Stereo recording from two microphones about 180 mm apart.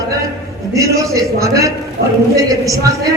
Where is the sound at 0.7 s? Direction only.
20° right (ahead or behind).